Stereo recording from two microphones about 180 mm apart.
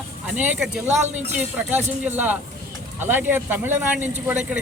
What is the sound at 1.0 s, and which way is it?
Speech, 40° right (ahead or behind).